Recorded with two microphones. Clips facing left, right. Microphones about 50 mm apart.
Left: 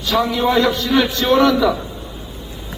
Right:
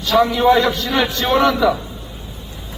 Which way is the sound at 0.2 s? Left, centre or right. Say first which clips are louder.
Right 3 dB; centre.